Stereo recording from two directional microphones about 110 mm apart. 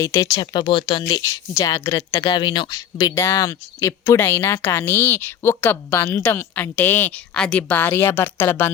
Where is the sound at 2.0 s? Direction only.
40° left (ahead or behind).